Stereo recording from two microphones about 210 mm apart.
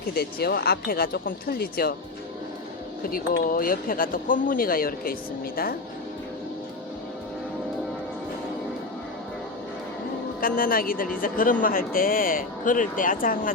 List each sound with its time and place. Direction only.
0.1 s speech: 45° left (ahead or behind)
3.1 s speech: 45° left (ahead or behind)
10.4 s speech: 45° left (ahead or behind)